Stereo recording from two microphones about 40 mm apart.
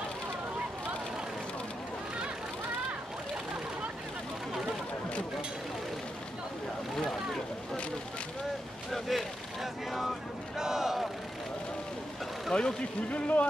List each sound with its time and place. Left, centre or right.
8.9 s a sound: centre
10.6 s crowd: centre
12.5 s vehicle: centre
13.1 s speech: left